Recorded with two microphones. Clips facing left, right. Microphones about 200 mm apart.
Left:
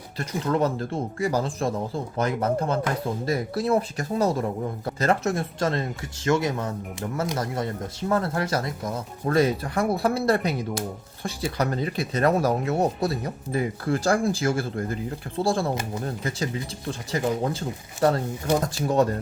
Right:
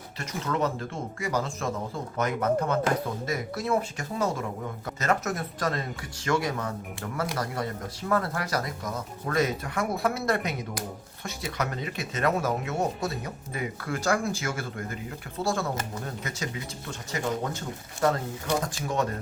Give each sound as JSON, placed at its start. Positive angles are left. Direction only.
{"t": 0.2, "sound": "speech", "side_deg": 35}